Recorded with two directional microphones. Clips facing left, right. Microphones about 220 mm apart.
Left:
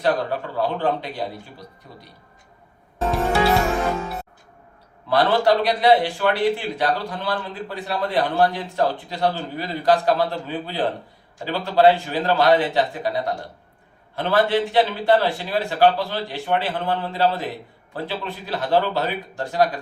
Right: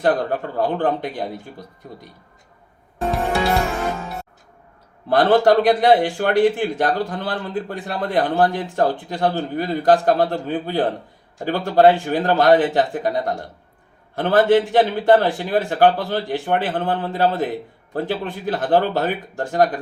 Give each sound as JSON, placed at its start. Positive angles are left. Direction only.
{"t": 0.0, "sound": "a man's voice", "side_deg": -50}
{"t": 5.0, "sound": "a man's voice", "side_deg": -50}